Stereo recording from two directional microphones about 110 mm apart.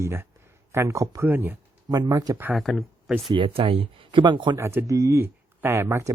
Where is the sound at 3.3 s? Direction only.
55° right (ahead or behind).